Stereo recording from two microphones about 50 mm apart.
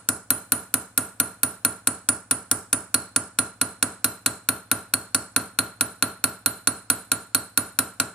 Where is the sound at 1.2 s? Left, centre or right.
Centre.